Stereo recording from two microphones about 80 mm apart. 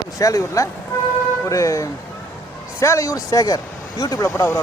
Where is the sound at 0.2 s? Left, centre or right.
Left.